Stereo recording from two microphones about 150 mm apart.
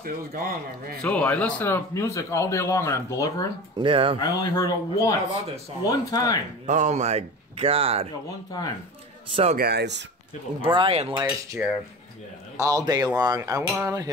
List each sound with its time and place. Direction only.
0.0 s speech: 80° right
1.0 s a man's voice: 10° left (ahead or behind)
3.8 s speech: 35° right (ahead or behind)
4.2 s a man's voice: 25° left (ahead or behind)
6.6 s speech: 55° right (ahead or behind)
8.5 s a man's voice: 25° left (ahead or behind)
9.3 s speech: 45° right (ahead or behind)
9.6 s speech: 90° right
10.6 s speech: 35° right (ahead or behind)
11.6 s cutlery: 5° right (ahead or behind)
12.5 s cutlery: 20° right (ahead or behind)